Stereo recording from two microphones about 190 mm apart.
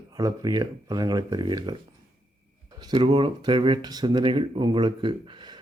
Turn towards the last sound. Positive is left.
turn(degrees=-25)  # may be behind; listen again after turning